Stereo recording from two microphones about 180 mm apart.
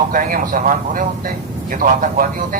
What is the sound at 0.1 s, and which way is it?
Speech, 50° right (ahead or behind).